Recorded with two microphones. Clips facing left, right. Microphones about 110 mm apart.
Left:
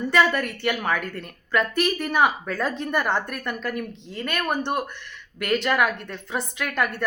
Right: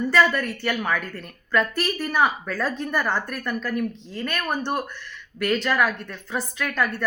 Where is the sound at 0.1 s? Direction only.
20° left (ahead or behind).